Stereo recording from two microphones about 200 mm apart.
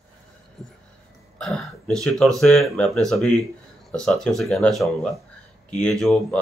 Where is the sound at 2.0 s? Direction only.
Centre (ahead or behind).